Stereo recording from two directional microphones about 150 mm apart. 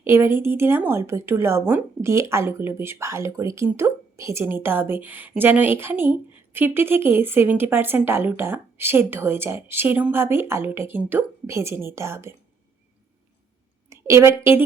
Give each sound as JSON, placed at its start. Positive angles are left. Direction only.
{"t": 0.0, "sound": "a woman's voice", "side_deg": -15}
{"t": 13.9, "sound": "a woman's voice", "side_deg": -20}